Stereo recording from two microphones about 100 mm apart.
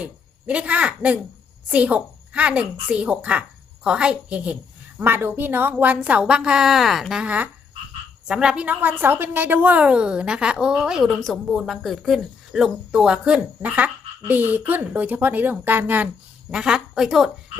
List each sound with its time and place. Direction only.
0.0 s a woman's voice: 15° right (ahead or behind)
16.5 s a woman's voice: 10° right (ahead or behind)